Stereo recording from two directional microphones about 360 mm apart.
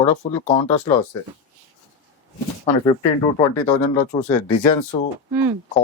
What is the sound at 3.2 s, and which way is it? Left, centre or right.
Speech, centre.